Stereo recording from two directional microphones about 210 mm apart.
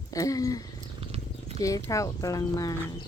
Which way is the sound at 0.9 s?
30° right (ahead or behind).